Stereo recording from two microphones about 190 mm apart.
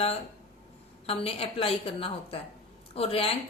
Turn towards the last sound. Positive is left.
turn(degrees=30)  # may be behind; listen again after turning